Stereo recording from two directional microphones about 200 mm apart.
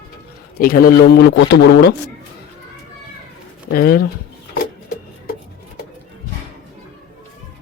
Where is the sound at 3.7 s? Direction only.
50° left (ahead or behind).